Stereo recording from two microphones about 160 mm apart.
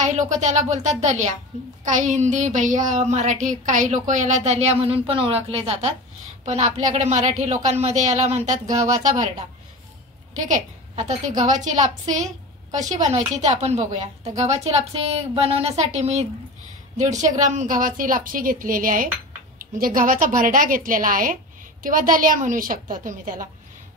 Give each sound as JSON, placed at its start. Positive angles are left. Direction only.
{"t": 0.0, "sound": "a woman's voice", "side_deg": -50}
{"t": 10.3, "sound": "a woman's voice", "side_deg": -50}